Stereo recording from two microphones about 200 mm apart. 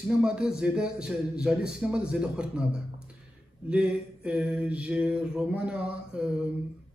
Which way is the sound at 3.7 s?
5° right (ahead or behind).